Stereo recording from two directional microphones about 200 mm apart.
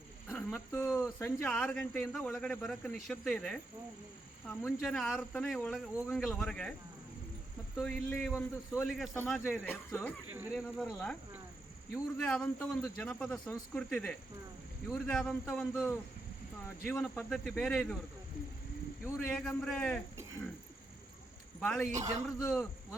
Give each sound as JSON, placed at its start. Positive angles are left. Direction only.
{"t": 0.3, "sound": "speech", "side_deg": 10}
{"t": 7.8, "sound": "speech", "side_deg": 5}
{"t": 10.2, "sound": "speech", "side_deg": -10}
{"t": 19.0, "sound": "speech", "side_deg": 10}
{"t": 21.6, "sound": "speech", "side_deg": 5}
{"t": 21.9, "sound": "a man's voice", "side_deg": -35}
{"t": 22.3, "sound": "speech", "side_deg": 5}